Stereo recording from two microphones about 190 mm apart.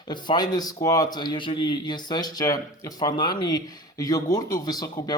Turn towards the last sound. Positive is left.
turn(degrees=20)  # may be behind; listen again after turning